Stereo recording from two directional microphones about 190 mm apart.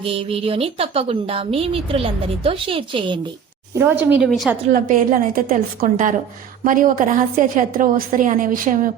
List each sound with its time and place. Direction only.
0.0 s speech: 30° right (ahead or behind)
3.8 s a woman's voice: 10° right (ahead or behind)
4.7 s a woman's voice: 45° right (ahead or behind)